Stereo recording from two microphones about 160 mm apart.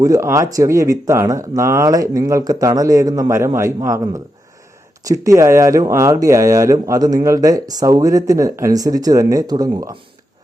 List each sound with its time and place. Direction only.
0.0 s speech: 20° right (ahead or behind)